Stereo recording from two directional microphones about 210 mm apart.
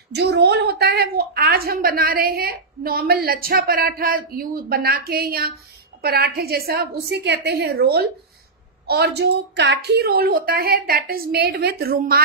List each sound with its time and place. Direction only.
0.1 s a woman's voice: 55° right (ahead or behind)